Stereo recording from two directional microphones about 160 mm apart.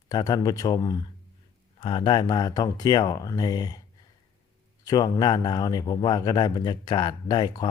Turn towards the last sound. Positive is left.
turn(degrees=30)  # may be behind; listen again after turning